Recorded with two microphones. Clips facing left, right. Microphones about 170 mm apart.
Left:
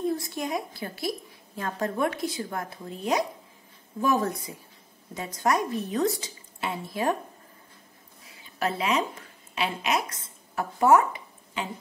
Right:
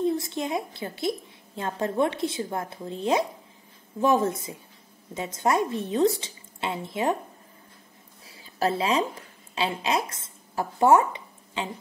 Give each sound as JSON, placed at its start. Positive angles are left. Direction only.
{"t": 0.0, "sound": "a woman's voice", "side_deg": -25}
{"t": 8.3, "sound": "a sound", "side_deg": -35}
{"t": 9.6, "sound": "a woman's voice", "side_deg": -30}